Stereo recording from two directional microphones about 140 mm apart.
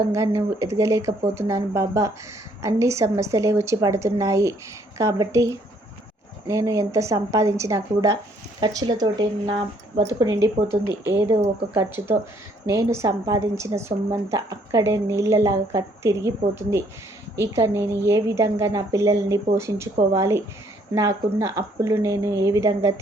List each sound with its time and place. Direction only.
0.1 s a woman's voice: 20° right (ahead or behind)